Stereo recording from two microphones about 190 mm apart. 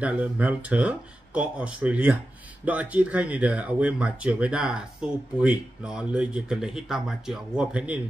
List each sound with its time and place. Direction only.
0.0 s speech: 5° right (ahead or behind)